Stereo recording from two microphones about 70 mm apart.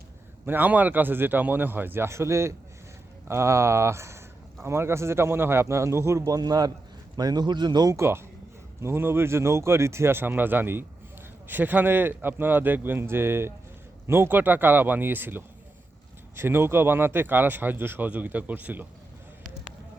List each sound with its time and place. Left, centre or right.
0.4 s a man's voice: right
7.9 s a man's voice: right